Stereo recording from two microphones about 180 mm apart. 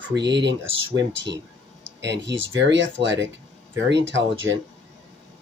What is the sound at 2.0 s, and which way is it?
Speech, 75° right (ahead or behind).